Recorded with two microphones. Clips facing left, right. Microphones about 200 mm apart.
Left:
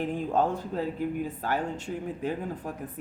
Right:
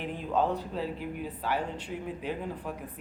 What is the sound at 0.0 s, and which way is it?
Speech, 45° left (ahead or behind).